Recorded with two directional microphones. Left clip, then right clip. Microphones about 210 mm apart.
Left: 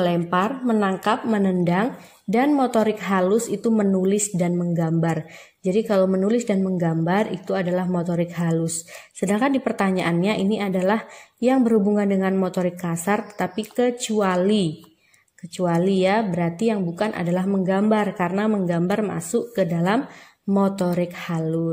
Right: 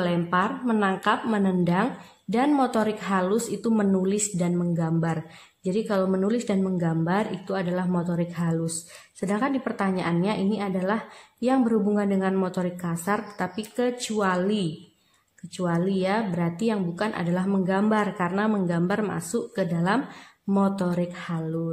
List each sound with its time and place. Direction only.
0.0 s a woman's voice: 20° left (ahead or behind)